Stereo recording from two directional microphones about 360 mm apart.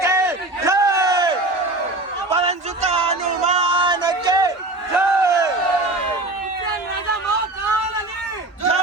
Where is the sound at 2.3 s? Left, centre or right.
Centre.